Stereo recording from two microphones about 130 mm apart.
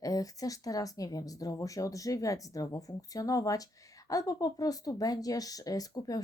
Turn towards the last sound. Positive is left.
turn(degrees=30)  # may be behind; listen again after turning